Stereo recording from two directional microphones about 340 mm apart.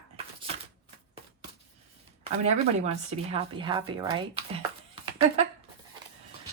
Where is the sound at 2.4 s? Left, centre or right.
Centre.